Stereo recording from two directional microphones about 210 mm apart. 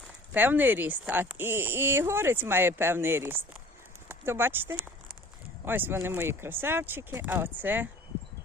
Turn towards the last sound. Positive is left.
turn(degrees=-10)  # may be behind; listen again after turning